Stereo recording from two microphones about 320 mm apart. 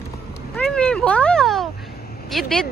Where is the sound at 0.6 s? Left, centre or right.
Centre.